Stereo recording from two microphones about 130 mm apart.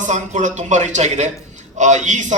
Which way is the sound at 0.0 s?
70° right (ahead or behind).